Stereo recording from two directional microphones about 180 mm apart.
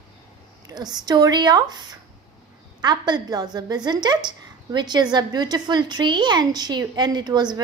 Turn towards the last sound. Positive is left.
turn(degrees=-25)  # may be behind; listen again after turning